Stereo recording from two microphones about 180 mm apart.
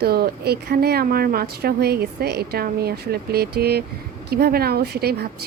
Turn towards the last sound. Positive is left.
turn(degrees=-60)  # may be behind; listen again after turning